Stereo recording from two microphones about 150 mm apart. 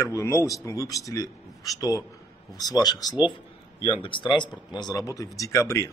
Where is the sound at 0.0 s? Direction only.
20° left (ahead or behind).